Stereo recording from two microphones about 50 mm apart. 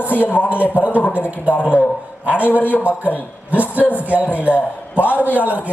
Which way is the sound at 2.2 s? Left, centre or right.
Right.